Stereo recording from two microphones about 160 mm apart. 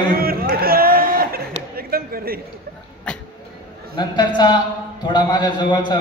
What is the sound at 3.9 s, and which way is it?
A man's voice, 30° left (ahead or behind).